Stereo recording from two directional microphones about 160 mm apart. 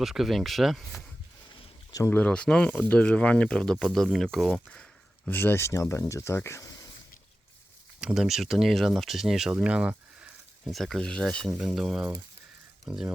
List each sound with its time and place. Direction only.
0.0 s speech: centre (ahead or behind)
2.0 s speech: 10° left (ahead or behind)
8.0 s speech: 5° right (ahead or behind)